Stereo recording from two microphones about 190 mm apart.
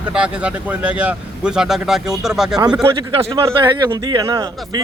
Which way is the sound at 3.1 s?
25° right (ahead or behind).